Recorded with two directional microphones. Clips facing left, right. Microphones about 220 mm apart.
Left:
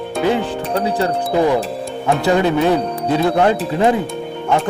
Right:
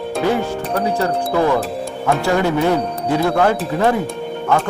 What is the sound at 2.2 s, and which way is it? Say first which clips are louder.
Speech: left 3 dB; 20° left (ahead or behind).